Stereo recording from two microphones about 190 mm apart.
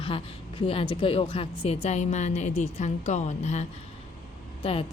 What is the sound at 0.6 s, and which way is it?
A woman's voice, 30° left (ahead or behind).